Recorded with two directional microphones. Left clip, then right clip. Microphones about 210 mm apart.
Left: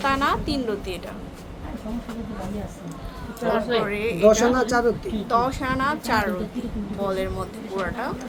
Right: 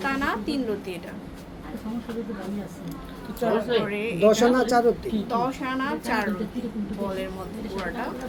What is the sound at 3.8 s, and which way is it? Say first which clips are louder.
Speech: left 2 dB; 20° left (ahead or behind).